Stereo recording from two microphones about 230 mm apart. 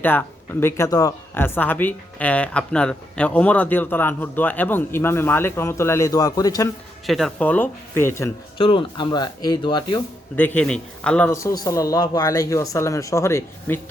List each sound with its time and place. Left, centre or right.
0.0 s speech: centre
7.1 s speech: centre
10.3 s speech: centre